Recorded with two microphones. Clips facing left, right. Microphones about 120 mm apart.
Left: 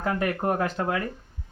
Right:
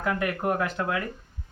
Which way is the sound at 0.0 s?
35° left (ahead or behind).